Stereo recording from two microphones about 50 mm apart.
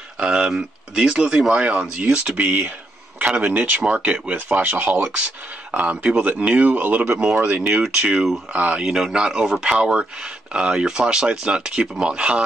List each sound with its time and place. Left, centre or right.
0.2 s speech: centre; by 7.0 s right
7.0 s speech: right
7.3 s speech: right
7.9 s speech: centre
8.5 s speech: right
8.8 s speech: centre